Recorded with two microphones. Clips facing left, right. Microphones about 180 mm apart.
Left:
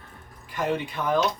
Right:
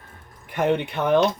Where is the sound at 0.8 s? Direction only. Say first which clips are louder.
Right 5 dB; 70° right (ahead or behind).